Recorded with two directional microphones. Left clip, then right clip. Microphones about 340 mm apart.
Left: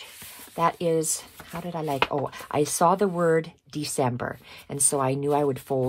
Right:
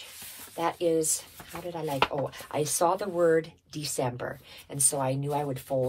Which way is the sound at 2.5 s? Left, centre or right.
Left.